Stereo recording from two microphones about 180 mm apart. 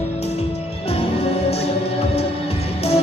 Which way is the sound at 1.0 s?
30° left (ahead or behind).